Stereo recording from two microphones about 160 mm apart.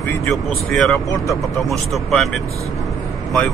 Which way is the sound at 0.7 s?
Centre (ahead or behind).